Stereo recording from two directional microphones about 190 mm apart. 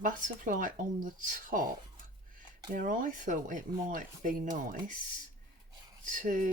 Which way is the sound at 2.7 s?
45° right (ahead or behind).